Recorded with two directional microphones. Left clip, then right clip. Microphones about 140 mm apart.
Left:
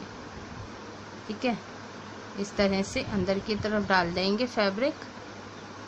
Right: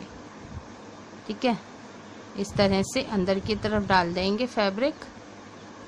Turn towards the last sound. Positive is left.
turn(degrees=-25)  # may be behind; listen again after turning